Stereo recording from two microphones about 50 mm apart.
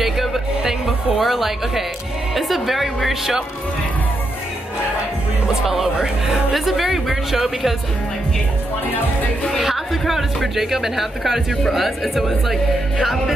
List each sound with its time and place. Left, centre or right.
0.0 s music: centre
2.3 s speech: centre
5.7 s speech: centre
9.6 s speech: centre